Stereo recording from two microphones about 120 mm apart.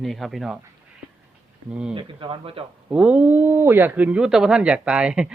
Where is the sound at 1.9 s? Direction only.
45° right (ahead or behind).